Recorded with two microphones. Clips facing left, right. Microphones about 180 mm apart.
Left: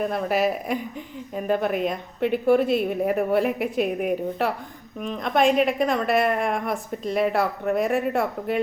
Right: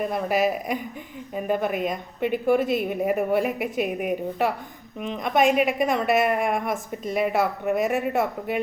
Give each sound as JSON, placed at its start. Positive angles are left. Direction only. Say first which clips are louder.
{"t": 0.0, "sound": "a woman's voice", "louder": "even", "side_deg": 0}
{"t": 4.9, "sound": "a woman's voice", "louder": "even", "side_deg": -15}
{"t": 5.4, "sound": "a woman's voice", "louder": "left 1 dB", "side_deg": -5}